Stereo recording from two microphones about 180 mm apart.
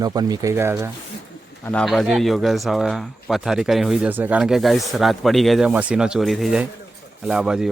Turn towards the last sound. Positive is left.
turn(degrees=-5)  # may be behind; listen again after turning